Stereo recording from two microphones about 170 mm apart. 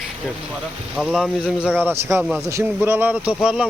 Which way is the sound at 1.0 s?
Centre (ahead or behind).